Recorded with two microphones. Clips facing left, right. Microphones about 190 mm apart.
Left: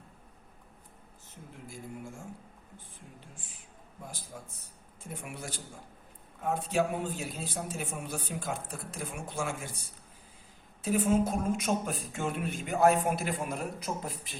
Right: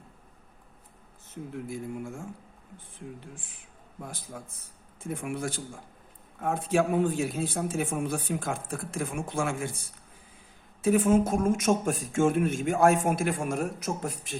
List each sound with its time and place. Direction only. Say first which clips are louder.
1.6 s speech: right 4 dB; 55° right (ahead or behind)
4.0 s a man's voice: right 4 dB; 55° right (ahead or behind)
10.8 s a man's voice: right 5 dB; 50° right (ahead or behind)